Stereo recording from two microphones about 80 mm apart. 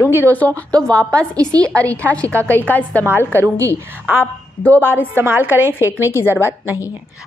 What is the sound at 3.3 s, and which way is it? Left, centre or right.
Speech, right.